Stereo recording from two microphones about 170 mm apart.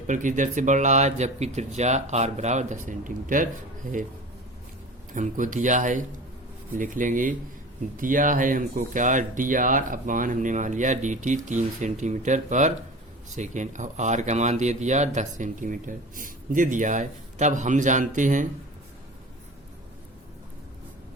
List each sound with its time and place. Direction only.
0.1 s speech: 45° right (ahead or behind)
5.1 s speech: 50° right (ahead or behind)